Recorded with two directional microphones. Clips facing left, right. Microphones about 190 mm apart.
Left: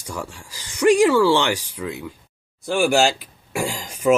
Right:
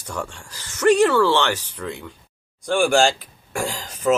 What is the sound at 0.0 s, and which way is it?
Speech, 10° left (ahead or behind).